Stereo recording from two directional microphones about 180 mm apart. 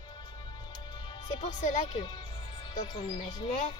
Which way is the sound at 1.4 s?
40° left (ahead or behind).